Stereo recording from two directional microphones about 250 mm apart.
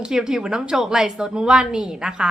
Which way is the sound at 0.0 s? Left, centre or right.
Centre.